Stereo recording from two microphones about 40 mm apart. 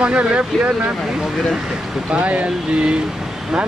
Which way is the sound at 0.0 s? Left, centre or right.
Right.